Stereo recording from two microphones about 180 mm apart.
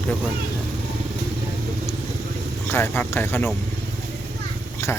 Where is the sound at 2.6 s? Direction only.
15° left (ahead or behind).